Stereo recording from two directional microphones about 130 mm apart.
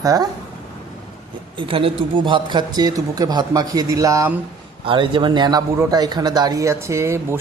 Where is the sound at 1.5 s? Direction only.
40° right (ahead or behind); by 4.3 s 25° right (ahead or behind).